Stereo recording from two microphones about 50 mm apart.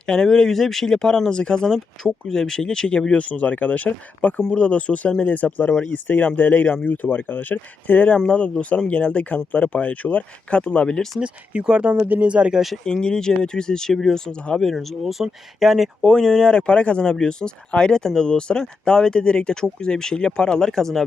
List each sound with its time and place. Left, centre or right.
0.0 s speech: centre; by 4.4 s left
4.4 s speech: left
8.2 s speech: centre
11.2 s speech: right
12.0 s speech: right
12.3 s speech: right
12.5 s speech: centre
12.8 s speech: centre
14.6 s speech: centre
16.0 s speech: centre